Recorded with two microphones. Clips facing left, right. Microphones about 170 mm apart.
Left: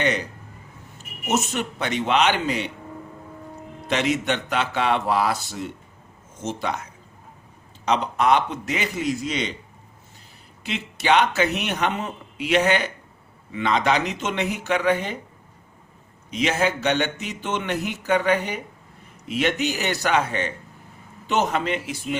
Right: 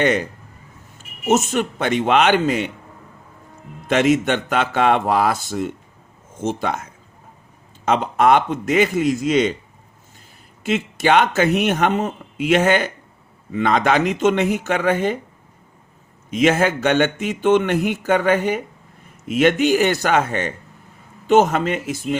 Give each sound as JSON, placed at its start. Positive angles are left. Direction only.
{"t": 1.3, "sound": "speech", "side_deg": -50}
{"t": 3.8, "sound": "speech", "side_deg": -50}
{"t": 7.9, "sound": "speech", "side_deg": -50}
{"t": 10.6, "sound": "speech", "side_deg": -45}
{"t": 16.3, "sound": "speech", "side_deg": -50}